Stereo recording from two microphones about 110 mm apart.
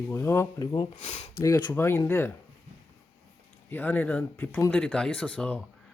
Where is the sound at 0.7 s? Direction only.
40° left (ahead or behind).